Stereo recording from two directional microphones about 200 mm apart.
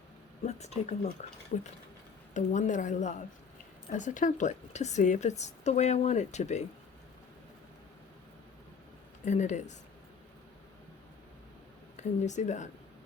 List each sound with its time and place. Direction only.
0.4 s a woman's voice: 35° left (ahead or behind)
9.2 s a woman's voice: 35° left (ahead or behind)
11.9 s a woman's voice: 35° left (ahead or behind)